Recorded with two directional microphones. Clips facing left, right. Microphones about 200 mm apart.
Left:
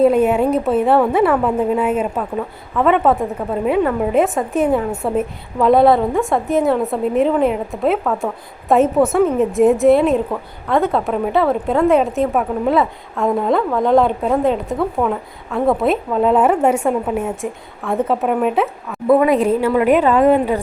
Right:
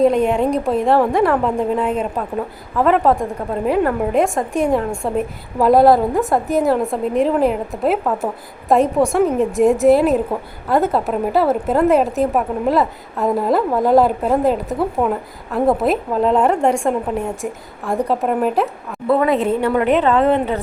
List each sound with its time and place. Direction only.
0.0 s a woman's voice: 5° left (ahead or behind)
19.1 s a woman's voice: 15° left (ahead or behind)